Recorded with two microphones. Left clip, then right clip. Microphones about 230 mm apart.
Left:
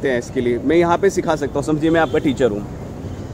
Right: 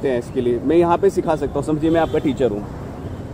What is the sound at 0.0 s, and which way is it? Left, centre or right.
Speech, centre.